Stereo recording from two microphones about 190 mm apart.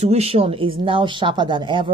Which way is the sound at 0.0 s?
35° right (ahead or behind).